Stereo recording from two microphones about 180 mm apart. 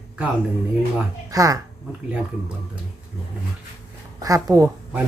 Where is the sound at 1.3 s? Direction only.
20° right (ahead or behind).